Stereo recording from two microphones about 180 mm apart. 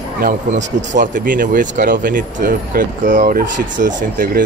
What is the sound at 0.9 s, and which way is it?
Speech, 45° right (ahead or behind).